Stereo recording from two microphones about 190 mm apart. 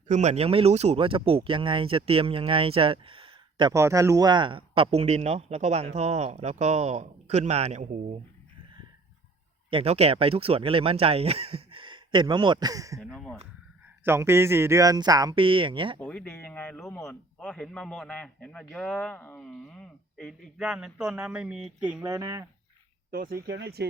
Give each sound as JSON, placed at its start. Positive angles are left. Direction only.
{"t": 0.1, "sound": "speech", "side_deg": -35}
{"t": 9.6, "sound": "speech", "side_deg": -30}
{"t": 13.0, "sound": "a man's voice", "side_deg": 5}
{"t": 14.0, "sound": "speech", "side_deg": -15}
{"t": 16.0, "sound": "a man's voice", "side_deg": 10}
{"t": 22.0, "sound": "speech", "side_deg": -15}
{"t": 23.1, "sound": "speech", "side_deg": -50}